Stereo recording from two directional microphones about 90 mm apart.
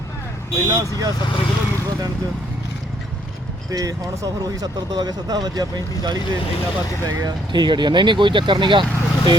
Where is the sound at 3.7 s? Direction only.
40° right (ahead or behind).